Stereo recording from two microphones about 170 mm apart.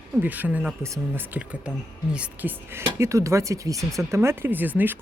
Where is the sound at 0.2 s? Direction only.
10° right (ahead or behind).